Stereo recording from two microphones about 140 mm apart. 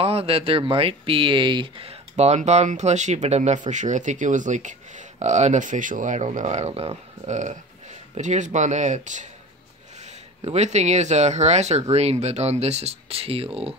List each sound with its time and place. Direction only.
0.0 s speech: 45° right (ahead or behind); by 9.3 s 60° right (ahead or behind)
10.4 s speech: 50° right (ahead or behind)